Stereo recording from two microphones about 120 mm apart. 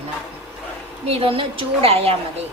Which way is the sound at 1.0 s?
55° right (ahead or behind).